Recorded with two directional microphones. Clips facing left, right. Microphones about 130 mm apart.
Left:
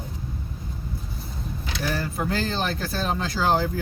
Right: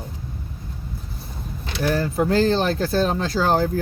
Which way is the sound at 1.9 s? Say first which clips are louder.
Right 9 dB; 35° right (ahead or behind).